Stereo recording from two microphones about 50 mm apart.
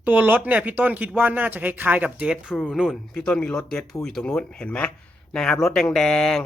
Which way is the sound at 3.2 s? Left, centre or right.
Centre.